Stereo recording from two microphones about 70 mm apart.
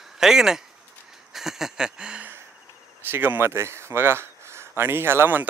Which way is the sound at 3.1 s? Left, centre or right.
Right.